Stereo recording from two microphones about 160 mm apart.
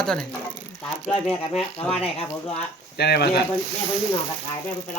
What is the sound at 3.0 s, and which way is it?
Speech, 90° left.